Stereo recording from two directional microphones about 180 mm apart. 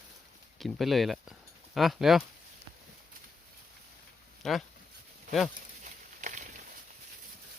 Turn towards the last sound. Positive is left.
turn(degrees=-45)  # may be behind; listen again after turning